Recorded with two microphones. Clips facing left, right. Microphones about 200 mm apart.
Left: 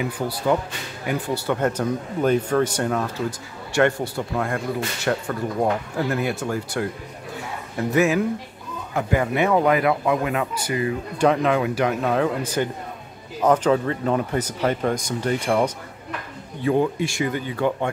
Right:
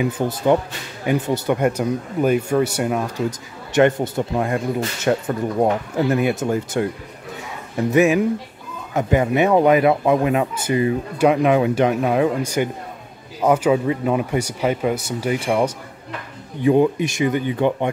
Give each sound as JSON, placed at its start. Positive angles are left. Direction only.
{"t": 0.0, "sound": "speech", "side_deg": -20}
{"t": 7.9, "sound": "speech", "side_deg": -20}
{"t": 11.1, "sound": "speech", "side_deg": -15}